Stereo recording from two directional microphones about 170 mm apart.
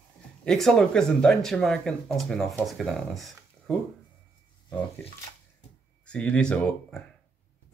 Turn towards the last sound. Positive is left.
turn(degrees=5)  # may be behind; listen again after turning